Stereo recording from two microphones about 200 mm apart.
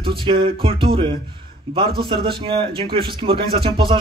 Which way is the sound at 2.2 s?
25° right (ahead or behind).